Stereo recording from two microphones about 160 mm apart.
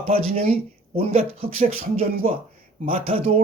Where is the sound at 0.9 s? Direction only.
40° right (ahead or behind).